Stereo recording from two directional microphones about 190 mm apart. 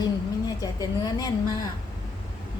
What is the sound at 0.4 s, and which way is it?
A woman's voice, 20° left (ahead or behind).